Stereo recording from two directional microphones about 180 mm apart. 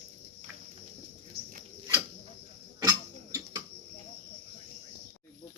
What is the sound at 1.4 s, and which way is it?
Bird, 60° right (ahead or behind).